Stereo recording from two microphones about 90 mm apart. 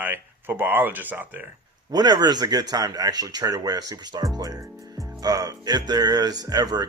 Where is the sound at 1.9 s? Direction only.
45° right (ahead or behind).